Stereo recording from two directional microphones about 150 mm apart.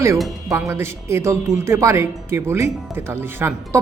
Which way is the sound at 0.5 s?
15° right (ahead or behind).